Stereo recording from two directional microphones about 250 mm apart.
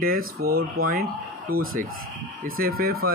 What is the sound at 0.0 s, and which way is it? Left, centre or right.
Speech, right.